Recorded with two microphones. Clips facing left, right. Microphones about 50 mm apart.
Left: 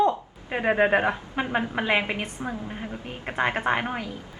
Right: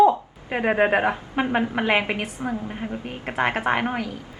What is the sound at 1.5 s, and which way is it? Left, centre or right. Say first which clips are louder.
Speech: right 2 dB; right.